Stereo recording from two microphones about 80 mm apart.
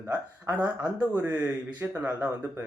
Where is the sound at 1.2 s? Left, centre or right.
Right.